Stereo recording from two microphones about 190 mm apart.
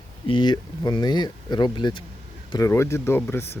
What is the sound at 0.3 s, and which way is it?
Speech, 25° left (ahead or behind).